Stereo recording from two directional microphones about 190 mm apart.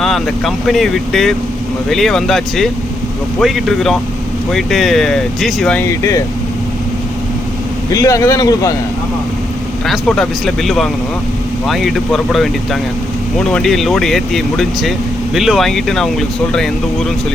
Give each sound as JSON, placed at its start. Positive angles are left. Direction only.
{"t": 0.0, "sound": "speech", "side_deg": 0}
{"t": 8.0, "sound": "speech", "side_deg": 15}
{"t": 9.8, "sound": "speech", "side_deg": 0}
{"t": 13.5, "sound": "speech", "side_deg": 0}